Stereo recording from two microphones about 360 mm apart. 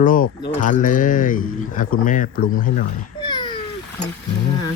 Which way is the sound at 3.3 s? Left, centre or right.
Centre.